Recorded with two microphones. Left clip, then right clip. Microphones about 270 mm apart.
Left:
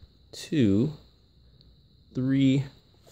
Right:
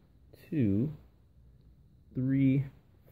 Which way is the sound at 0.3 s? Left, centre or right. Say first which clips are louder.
Left 7 dB; centre.